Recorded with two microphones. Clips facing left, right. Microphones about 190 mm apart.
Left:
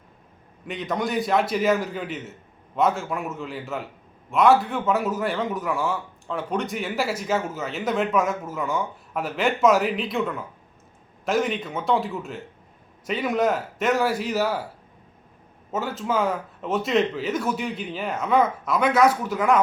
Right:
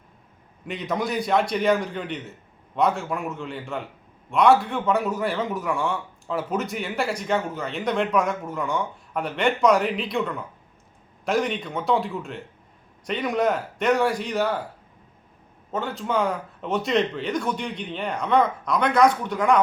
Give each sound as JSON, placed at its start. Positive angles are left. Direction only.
{"t": 0.7, "sound": "a man's voice", "side_deg": 0}
{"t": 15.7, "sound": "a man's voice", "side_deg": 5}